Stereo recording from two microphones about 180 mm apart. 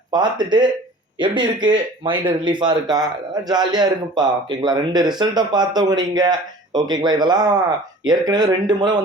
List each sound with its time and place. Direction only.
0.1 s speech: 25° right (ahead or behind)